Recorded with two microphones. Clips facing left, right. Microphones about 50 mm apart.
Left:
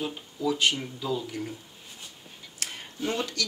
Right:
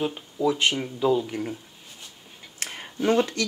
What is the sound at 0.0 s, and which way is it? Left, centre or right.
Speech, right.